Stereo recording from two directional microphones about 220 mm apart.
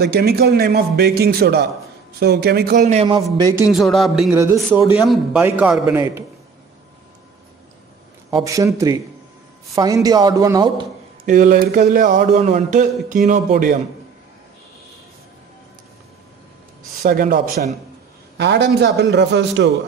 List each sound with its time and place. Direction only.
0.0 s a man's voice: 45° right (ahead or behind); by 3.2 s 30° right (ahead or behind)
3.7 s a man's voice: centre (ahead or behind)
8.3 s a man's voice: 15° right (ahead or behind)
11.2 s speech: 35° right (ahead or behind)
17.0 s a man's voice: 40° right (ahead or behind)